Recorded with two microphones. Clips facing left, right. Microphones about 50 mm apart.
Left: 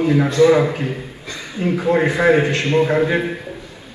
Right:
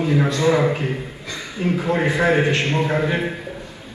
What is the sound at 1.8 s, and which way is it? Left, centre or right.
A man's voice, left.